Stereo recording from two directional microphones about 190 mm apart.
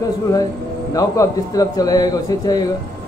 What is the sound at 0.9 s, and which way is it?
A man's voice, 20° left (ahead or behind).